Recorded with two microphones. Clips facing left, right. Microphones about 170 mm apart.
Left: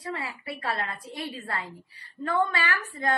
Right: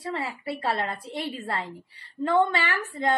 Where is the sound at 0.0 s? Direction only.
25° right (ahead or behind).